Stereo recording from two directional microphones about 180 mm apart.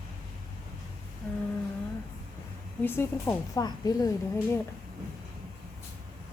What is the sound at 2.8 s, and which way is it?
Speech, 10° left (ahead or behind).